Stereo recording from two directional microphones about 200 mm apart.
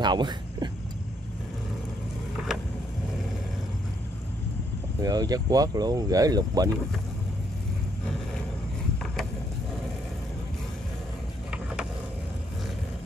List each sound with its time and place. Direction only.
0.0 s speech: 20° right (ahead or behind)
5.0 s speech: 20° right (ahead or behind)